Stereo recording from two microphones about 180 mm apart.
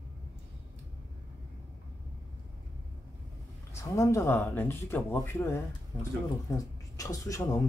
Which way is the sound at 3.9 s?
15° left (ahead or behind).